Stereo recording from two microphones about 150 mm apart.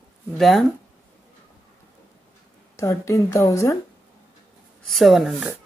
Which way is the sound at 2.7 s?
20° left (ahead or behind).